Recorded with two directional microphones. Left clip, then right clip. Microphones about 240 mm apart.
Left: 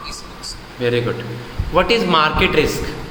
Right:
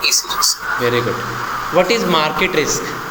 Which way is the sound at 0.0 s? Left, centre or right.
Right.